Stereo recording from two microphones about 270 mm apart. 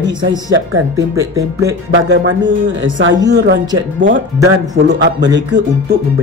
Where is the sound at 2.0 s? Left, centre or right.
Right.